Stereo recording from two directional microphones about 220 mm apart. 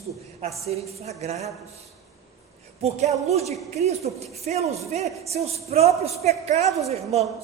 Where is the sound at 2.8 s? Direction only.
30° right (ahead or behind).